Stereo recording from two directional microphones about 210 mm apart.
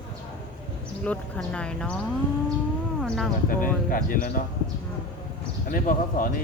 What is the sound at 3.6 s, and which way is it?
Speech, 40° left (ahead or behind).